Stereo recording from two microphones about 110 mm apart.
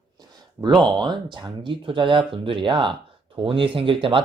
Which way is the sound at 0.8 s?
45° right (ahead or behind).